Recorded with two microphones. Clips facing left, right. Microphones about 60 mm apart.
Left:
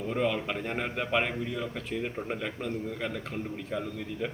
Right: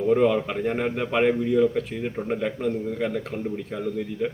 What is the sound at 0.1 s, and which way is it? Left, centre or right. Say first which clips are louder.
A man's voice: right 9 dB; centre.